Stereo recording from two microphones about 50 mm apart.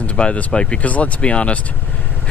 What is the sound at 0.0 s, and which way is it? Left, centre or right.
Speech, left.